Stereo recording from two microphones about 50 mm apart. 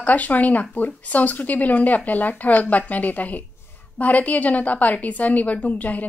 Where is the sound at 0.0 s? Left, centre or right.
Left.